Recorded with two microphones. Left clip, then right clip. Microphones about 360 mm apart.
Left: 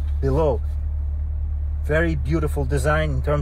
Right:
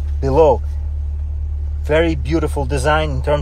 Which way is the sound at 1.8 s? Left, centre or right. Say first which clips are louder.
Right 6 dB; right.